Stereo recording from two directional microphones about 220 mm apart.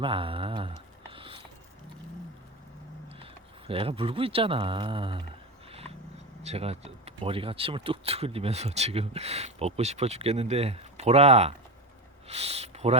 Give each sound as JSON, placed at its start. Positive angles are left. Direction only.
{"t": 0.0, "sound": "speech", "side_deg": -25}
{"t": 1.1, "sound": "mechanisms", "side_deg": -25}
{"t": 3.7, "sound": "speech", "side_deg": -25}
{"t": 6.4, "sound": "speech", "side_deg": -30}